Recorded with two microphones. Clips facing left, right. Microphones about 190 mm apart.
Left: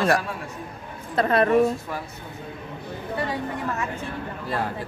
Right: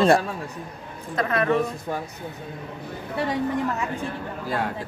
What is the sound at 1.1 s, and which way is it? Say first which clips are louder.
Speech: left 3 dB; 35° left (ahead or behind).